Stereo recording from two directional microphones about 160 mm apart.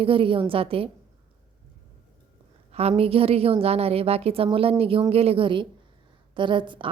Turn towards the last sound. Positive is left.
turn(degrees=-30)  # may be behind; listen again after turning